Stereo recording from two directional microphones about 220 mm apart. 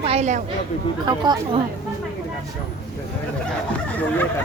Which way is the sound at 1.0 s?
20° right (ahead or behind).